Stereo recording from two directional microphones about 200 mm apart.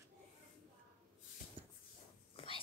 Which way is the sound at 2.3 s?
25° left (ahead or behind).